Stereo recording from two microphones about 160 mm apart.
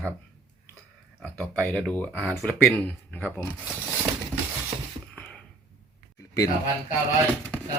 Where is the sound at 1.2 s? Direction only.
10° left (ahead or behind).